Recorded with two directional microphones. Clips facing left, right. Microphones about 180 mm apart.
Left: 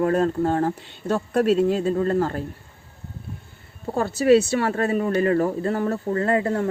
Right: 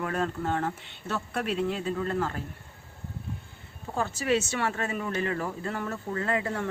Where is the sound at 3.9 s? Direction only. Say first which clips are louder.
Left 10 dB; 35° left (ahead or behind).